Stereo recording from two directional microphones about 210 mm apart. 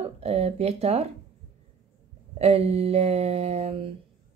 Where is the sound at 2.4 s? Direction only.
30° right (ahead or behind).